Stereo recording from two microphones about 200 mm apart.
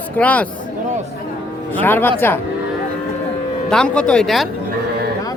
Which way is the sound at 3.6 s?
5° left (ahead or behind).